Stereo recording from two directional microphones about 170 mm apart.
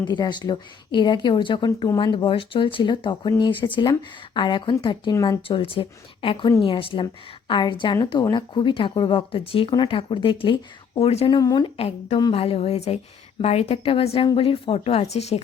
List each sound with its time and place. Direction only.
0.0 s speech: 25° left (ahead or behind)
5.5 s speech: 30° left (ahead or behind)
11.3 s speech: 25° left (ahead or behind); by 15.4 s 40° left (ahead or behind)